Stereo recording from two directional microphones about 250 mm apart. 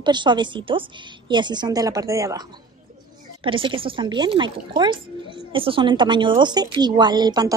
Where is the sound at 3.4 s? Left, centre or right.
Right.